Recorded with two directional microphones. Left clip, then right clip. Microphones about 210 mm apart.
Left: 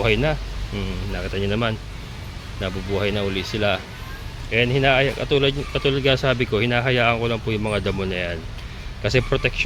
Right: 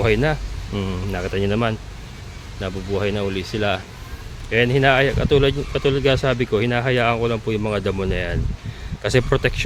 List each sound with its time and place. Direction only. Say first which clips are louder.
0.0 s speech: right 1 dB; 20° right (ahead or behind)